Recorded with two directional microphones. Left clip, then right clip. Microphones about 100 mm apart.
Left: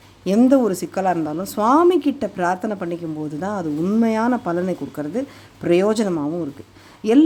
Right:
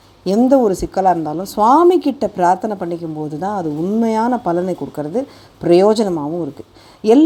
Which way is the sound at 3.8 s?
15° left (ahead or behind).